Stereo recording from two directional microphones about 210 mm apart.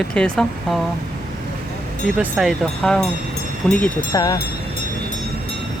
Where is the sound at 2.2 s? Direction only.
5° right (ahead or behind).